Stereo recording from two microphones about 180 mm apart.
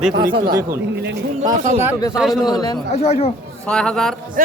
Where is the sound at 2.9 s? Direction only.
35° left (ahead or behind).